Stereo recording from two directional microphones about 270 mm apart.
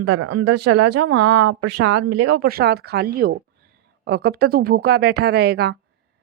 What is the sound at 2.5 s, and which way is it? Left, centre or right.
Speech, right.